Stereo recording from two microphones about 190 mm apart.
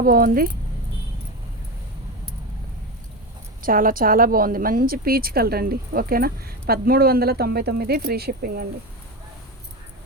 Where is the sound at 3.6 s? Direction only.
45° right (ahead or behind).